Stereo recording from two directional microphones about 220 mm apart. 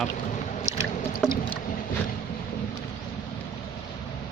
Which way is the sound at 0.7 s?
10° right (ahead or behind).